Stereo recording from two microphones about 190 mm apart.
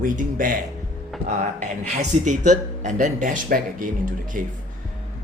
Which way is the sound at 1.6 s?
40° right (ahead or behind).